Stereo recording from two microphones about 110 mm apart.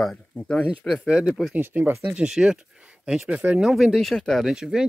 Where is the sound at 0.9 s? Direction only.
5° right (ahead or behind).